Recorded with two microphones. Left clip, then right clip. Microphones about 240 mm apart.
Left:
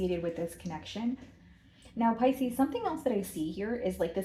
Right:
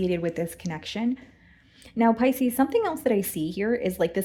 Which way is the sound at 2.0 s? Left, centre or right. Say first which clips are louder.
Right 6 dB; right.